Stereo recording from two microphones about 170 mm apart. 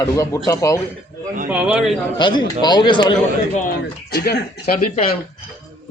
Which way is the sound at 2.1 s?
25° left (ahead or behind).